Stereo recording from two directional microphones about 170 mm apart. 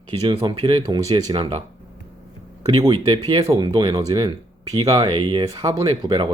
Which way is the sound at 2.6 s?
25° right (ahead or behind).